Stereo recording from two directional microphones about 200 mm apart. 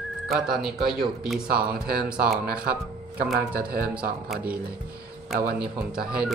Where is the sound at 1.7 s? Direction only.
50° right (ahead or behind).